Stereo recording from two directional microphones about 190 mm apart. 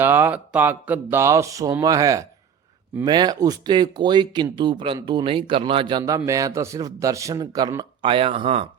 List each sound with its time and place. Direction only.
0.0 s speech: 10° right (ahead or behind); by 8.7 s 30° right (ahead or behind)